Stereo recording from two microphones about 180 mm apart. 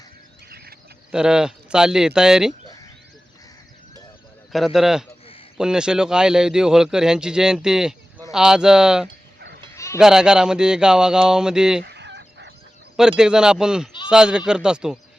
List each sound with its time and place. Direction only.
1.1 s speech: 5° right (ahead or behind)
4.5 s speech: centre (ahead or behind)
9.7 s sheep: 15° left (ahead or behind)
10.0 s speech: 5° right (ahead or behind)
11.8 s chicken: 75° right (ahead or behind)
13.0 s speech: 5° right (ahead or behind)